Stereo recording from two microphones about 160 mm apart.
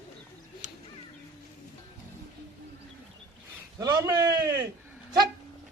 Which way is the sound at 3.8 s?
25° right (ahead or behind).